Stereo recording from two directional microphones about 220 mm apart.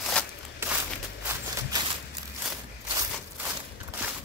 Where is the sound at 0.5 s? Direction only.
10° right (ahead or behind).